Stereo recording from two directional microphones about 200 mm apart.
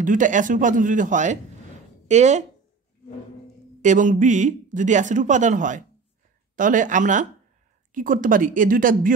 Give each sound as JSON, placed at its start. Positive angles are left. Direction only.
{"t": 0.0, "sound": "speech", "side_deg": -40}
{"t": 3.8, "sound": "speech", "side_deg": -40}